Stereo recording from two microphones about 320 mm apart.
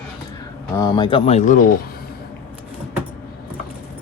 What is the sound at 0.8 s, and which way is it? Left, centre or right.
Speech, centre.